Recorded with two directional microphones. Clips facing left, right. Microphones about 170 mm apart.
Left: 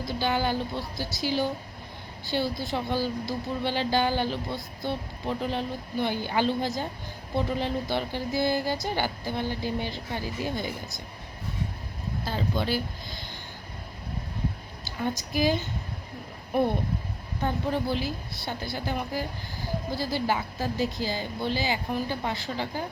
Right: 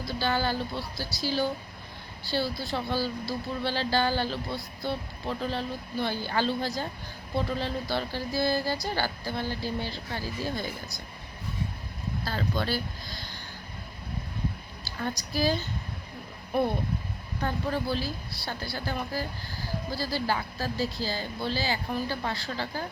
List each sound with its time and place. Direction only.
0.0 s speech: 15° left (ahead or behind)
12.2 s a woman's voice: 20° left (ahead or behind)
14.8 s a woman's voice: 20° left (ahead or behind)
17.4 s a woman's voice: 20° left (ahead or behind)